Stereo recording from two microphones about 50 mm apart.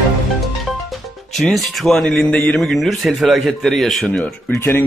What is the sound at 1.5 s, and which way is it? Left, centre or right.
Speech, centre.